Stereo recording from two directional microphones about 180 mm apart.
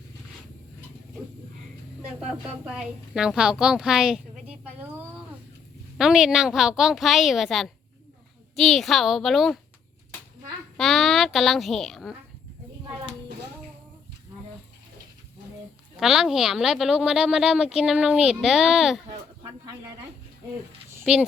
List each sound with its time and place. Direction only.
2.1 s a woman's voice: 5° right (ahead or behind)
10.8 s speech: centre (ahead or behind)
16.0 s speech: centre (ahead or behind)
19.4 s a sound: 20° right (ahead or behind)
21.0 s a child's voice: 5° right (ahead or behind)